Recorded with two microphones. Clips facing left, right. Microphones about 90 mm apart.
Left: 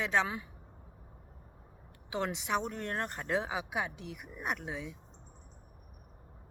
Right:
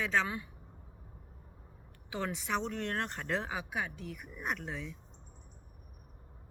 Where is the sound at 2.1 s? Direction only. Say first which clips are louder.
Left 2 dB; 20° left (ahead or behind).